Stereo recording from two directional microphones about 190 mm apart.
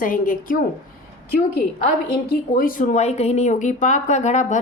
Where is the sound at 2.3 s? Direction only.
50° left (ahead or behind).